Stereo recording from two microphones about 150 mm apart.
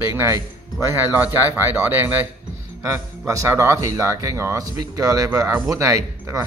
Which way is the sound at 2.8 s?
20° right (ahead or behind).